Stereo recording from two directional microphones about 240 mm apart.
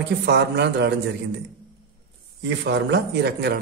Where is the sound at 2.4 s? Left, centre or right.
Right.